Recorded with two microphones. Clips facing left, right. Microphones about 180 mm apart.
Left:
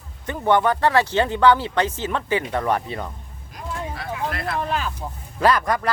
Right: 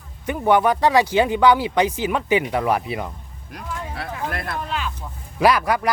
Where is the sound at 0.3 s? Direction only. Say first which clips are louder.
Right 2 dB; 10° right (ahead or behind).